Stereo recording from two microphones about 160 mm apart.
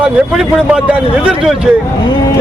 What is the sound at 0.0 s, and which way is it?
A man's voice, 5° right (ahead or behind).